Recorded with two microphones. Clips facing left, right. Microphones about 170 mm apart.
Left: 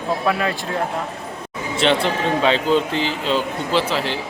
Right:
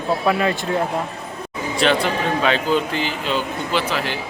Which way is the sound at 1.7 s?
25° left (ahead or behind).